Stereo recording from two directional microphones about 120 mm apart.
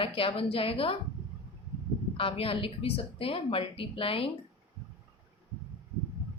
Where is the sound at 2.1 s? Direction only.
50° left (ahead or behind).